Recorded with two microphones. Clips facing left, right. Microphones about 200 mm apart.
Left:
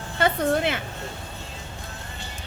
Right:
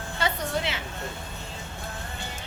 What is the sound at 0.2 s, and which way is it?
Speech, 55° left (ahead or behind).